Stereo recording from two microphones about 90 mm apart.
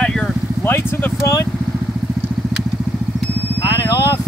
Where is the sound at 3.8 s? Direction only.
45° left (ahead or behind).